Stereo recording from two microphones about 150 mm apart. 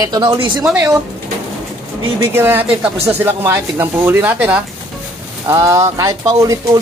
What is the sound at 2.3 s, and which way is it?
Speech, 15° right (ahead or behind).